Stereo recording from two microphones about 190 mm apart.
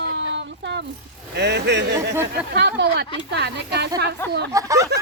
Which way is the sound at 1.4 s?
60° right (ahead or behind).